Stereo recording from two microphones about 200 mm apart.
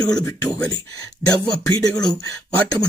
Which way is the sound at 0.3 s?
15° left (ahead or behind).